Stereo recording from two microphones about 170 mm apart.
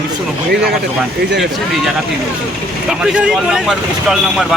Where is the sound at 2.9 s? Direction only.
5° right (ahead or behind).